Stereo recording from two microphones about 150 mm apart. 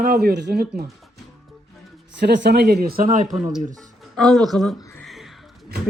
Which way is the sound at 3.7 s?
Centre (ahead or behind).